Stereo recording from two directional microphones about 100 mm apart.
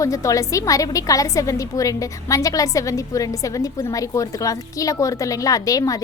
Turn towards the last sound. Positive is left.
turn(degrees=35)  # may be behind; listen again after turning